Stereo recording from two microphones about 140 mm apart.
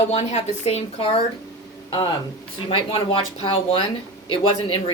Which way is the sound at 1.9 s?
30° left (ahead or behind).